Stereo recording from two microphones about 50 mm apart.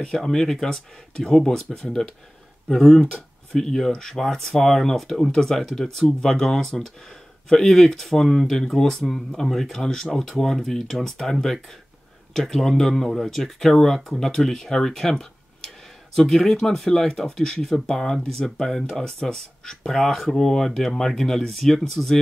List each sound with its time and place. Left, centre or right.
0.0 s speech: centre
3.1 s speech: centre
12.4 s speech: centre